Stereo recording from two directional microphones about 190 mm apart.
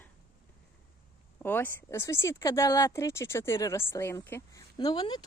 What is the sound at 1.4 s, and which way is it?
Speech, 10° left (ahead or behind).